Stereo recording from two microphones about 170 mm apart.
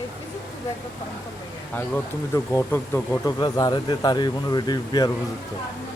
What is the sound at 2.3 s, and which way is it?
Speech, 15° left (ahead or behind).